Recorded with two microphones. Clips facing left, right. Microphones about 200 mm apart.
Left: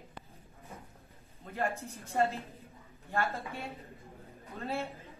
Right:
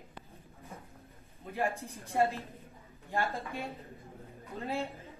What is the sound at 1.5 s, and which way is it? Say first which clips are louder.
A man's voice: right 1 dB; 15° right (ahead or behind).